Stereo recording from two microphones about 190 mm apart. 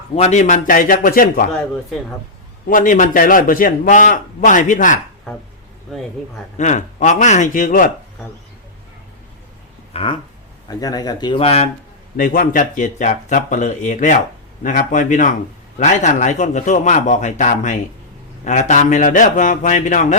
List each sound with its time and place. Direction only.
0.2 s a man's voice: 35° left (ahead or behind)
1.5 s speech: 5° left (ahead or behind)
2.6 s a man's voice: 45° left (ahead or behind)
6.6 s speech: 40° left (ahead or behind)
9.9 s a sound: 30° left (ahead or behind)
10.7 s speech: 20° left (ahead or behind)
12.1 s a man's voice: 50° left (ahead or behind)